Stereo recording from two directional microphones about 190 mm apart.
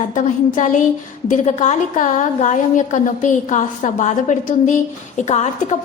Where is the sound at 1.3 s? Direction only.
40° left (ahead or behind).